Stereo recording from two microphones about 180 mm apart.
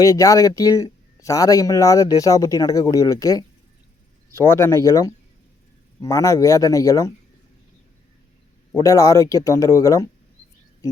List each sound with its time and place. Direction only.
0.0 s speech: 20° left (ahead or behind)
4.5 s speech: 15° left (ahead or behind)
8.8 s speech: 20° left (ahead or behind)